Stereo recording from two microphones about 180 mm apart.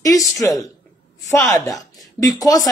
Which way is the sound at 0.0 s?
20° left (ahead or behind).